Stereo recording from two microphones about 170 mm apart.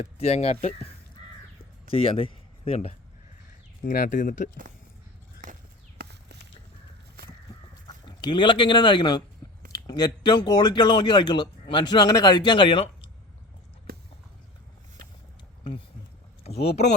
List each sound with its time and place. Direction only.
0.0 s speech: 40° left (ahead or behind)
1.9 s speech: 35° left (ahead or behind)
3.8 s speech: 50° left (ahead or behind)
5.4 s a sound: 50° right (ahead or behind)
6.0 s horse: 70° right (ahead or behind)
7.2 s crow: 65° right (ahead or behind)
7.9 s speech: 25° left (ahead or behind)
13.9 s horse: 65° right (ahead or behind)
16.4 s speech: 40° left (ahead or behind)